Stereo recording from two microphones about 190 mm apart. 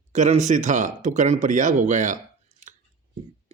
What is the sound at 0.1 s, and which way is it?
Speech, 40° right (ahead or behind).